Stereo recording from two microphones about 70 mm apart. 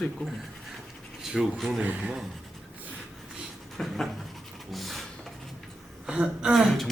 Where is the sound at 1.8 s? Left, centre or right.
Centre.